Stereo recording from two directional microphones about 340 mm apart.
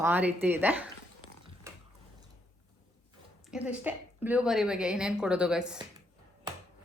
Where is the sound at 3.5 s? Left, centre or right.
Centre.